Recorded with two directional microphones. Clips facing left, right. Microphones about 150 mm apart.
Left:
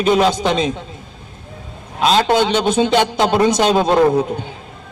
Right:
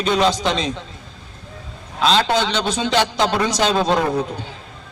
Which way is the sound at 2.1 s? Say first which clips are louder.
Left 4 dB; 50° left (ahead or behind).